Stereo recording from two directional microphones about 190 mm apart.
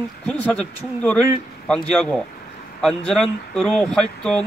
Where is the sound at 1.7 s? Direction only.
5° left (ahead or behind).